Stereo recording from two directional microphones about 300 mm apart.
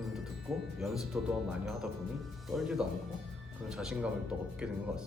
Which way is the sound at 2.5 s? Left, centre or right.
Centre.